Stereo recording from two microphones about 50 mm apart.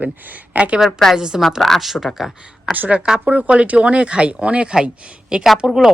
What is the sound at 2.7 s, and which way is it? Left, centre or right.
Speech, right.